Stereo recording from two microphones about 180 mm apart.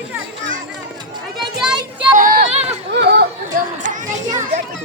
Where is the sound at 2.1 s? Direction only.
50° right (ahead or behind).